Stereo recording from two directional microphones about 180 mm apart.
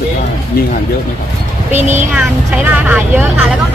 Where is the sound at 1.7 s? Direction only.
40° right (ahead or behind).